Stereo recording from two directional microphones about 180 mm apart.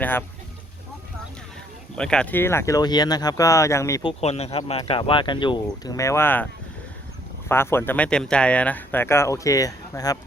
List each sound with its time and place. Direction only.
0.0 s speech: 10° left (ahead or behind)
2.0 s speech: 5° left (ahead or behind)
4.2 s speech: 35° left (ahead or behind); by 10.2 s 20° left (ahead or behind)